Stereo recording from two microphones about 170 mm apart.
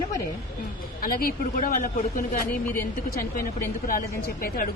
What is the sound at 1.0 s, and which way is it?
Speech, 60° left (ahead or behind).